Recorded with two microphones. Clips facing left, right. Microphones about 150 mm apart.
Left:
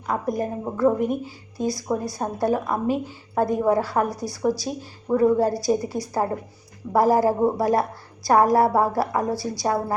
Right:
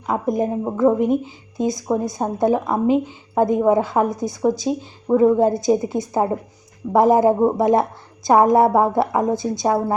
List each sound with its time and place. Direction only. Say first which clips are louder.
0.1 s a woman's voice: right 5 dB; 20° right (ahead or behind)